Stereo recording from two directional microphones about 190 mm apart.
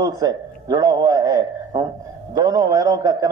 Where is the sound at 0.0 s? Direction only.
20° right (ahead or behind).